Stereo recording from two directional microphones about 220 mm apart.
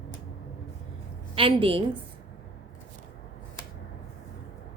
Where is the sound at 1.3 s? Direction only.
25° right (ahead or behind).